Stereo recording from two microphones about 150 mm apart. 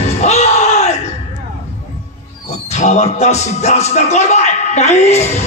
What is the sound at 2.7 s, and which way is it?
Speech, 50° left (ahead or behind).